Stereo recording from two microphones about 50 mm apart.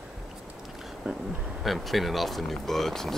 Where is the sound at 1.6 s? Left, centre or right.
Centre.